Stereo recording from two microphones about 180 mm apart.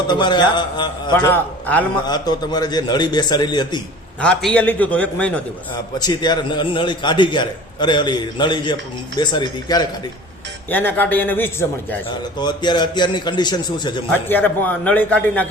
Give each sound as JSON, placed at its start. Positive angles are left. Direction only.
{"t": 0.1, "sound": "a man's voice", "side_deg": 25}
{"t": 1.3, "sound": "a man's voice", "side_deg": 10}
{"t": 2.0, "sound": "a man's voice", "side_deg": 25}
{"t": 4.2, "sound": "a man's voice", "side_deg": 5}
{"t": 6.0, "sound": "a man's voice", "side_deg": 25}
{"t": 10.7, "sound": "a man's voice", "side_deg": 10}
{"t": 12.4, "sound": "a man's voice", "side_deg": 25}
{"t": 14.1, "sound": "a man's voice", "side_deg": 10}